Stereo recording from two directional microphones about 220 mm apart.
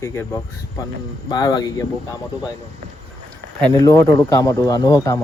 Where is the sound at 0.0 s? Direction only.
15° left (ahead or behind).